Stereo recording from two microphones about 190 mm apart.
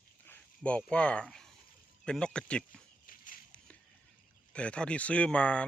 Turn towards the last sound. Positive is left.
turn(degrees=5)  # may be behind; listen again after turning